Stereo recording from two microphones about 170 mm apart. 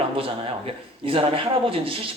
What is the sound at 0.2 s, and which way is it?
A man's voice, 35° right (ahead or behind).